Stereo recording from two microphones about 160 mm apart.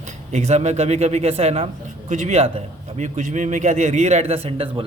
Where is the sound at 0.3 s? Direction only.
45° right (ahead or behind).